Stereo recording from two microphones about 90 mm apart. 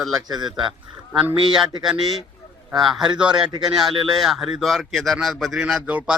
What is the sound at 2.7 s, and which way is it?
Speech, centre (ahead or behind).